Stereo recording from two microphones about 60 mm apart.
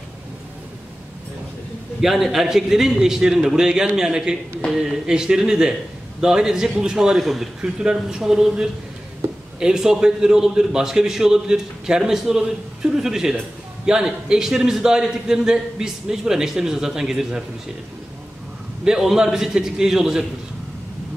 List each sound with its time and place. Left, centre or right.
2.0 s a man's voice: centre
9.2 s a sound: right
9.6 s a man's voice: centre
18.9 s a man's voice: centre